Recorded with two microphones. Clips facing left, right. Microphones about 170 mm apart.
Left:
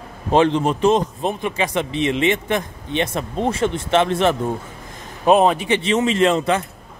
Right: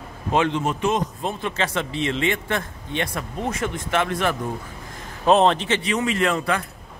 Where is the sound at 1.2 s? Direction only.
15° left (ahead or behind).